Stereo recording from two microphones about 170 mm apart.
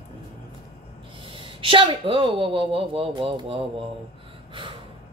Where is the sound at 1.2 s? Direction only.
30° right (ahead or behind).